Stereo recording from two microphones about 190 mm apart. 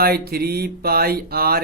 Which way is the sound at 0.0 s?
55° right (ahead or behind).